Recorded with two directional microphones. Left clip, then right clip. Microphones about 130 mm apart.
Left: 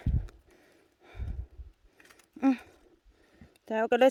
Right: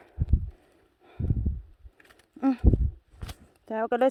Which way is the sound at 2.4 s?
10° left (ahead or behind).